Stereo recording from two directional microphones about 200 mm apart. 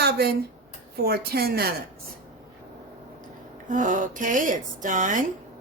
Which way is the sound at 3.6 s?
40° right (ahead or behind).